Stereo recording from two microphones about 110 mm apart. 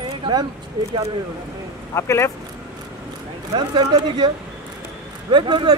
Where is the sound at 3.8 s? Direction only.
45° right (ahead or behind).